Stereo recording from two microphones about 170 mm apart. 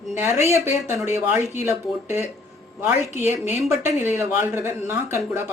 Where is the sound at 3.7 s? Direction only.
15° right (ahead or behind).